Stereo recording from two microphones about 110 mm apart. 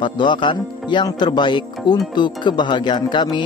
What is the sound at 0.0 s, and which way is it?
Speech, 45° left (ahead or behind).